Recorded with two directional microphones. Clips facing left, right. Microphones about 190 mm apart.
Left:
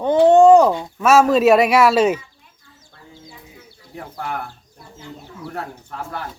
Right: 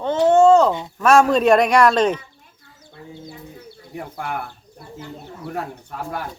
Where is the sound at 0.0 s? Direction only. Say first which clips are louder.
Left 3 dB; 15° left (ahead or behind).